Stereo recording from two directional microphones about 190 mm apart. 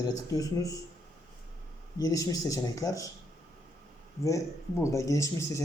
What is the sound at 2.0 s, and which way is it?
A man's voice, 20° left (ahead or behind).